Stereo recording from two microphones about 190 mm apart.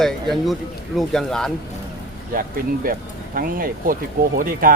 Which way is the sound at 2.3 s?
45° right (ahead or behind).